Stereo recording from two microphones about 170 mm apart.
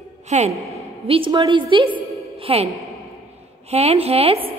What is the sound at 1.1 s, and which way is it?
A woman's voice, 30° right (ahead or behind).